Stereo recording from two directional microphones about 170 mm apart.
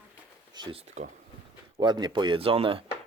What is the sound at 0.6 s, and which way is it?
Speech, 25° right (ahead or behind).